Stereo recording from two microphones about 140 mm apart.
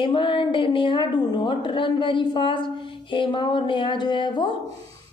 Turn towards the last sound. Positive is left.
turn(degrees=35)  # may be behind; listen again after turning